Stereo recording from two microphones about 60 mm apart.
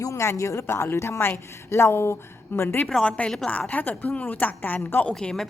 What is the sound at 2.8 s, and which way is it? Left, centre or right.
A woman's voice, centre.